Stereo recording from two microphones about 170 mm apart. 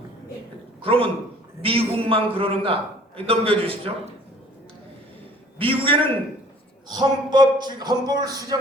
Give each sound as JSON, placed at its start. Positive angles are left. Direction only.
{"t": 0.8, "sound": "a man's voice", "side_deg": -30}
{"t": 5.5, "sound": "a man's voice", "side_deg": -30}